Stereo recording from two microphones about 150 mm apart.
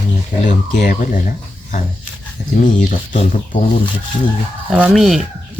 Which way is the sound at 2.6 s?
60° left (ahead or behind).